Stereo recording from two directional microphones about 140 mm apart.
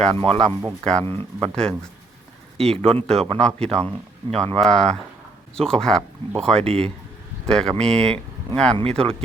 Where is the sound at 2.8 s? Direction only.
45° right (ahead or behind).